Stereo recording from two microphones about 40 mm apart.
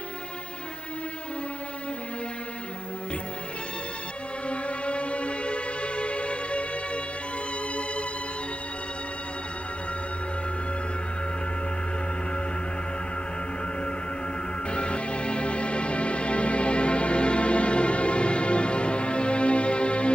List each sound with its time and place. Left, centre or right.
4.4 s music: left
14.7 s music: left